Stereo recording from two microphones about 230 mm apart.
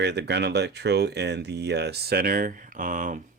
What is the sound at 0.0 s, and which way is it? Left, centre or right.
Speech, right.